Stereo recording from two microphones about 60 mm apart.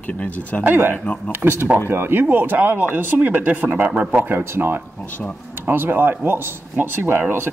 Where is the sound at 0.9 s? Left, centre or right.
Left.